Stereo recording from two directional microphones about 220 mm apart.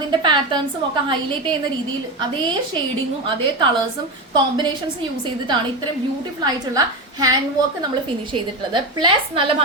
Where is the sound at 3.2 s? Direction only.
20° right (ahead or behind).